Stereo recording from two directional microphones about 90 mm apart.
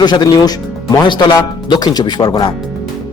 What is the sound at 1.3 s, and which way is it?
Speech, 45° left (ahead or behind).